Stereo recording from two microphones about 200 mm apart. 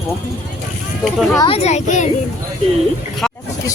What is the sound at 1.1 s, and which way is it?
Speech, centre (ahead or behind).